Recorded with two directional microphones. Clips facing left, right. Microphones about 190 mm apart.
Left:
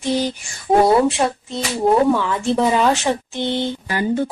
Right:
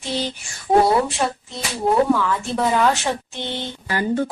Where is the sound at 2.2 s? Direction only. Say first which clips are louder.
Left 3 dB; 20° left (ahead or behind).